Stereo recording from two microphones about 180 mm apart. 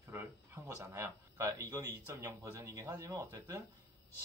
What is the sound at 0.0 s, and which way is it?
Speech, 15° right (ahead or behind).